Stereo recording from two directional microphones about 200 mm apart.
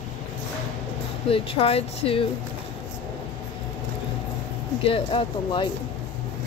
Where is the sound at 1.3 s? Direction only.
30° left (ahead or behind).